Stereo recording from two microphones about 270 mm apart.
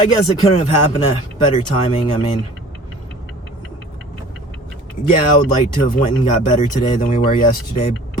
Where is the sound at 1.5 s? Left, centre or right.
Left.